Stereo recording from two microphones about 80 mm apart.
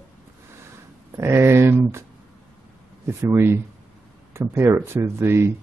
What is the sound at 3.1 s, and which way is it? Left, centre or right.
Speech, right.